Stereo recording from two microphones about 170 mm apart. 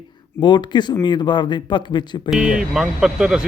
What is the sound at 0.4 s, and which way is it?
Speech, 25° left (ahead or behind).